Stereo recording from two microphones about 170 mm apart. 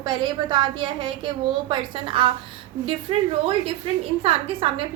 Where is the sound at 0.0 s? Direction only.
25° right (ahead or behind).